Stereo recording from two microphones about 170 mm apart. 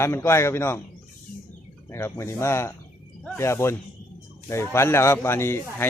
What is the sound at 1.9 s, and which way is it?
A man's voice, 15° left (ahead or behind).